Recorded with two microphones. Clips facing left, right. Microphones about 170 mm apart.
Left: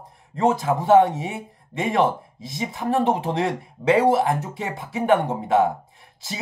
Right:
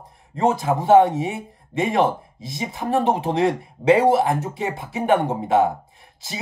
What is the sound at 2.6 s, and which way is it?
Speech, 20° right (ahead or behind).